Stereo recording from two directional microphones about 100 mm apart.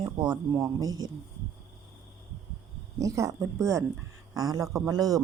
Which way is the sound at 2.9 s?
30° right (ahead or behind).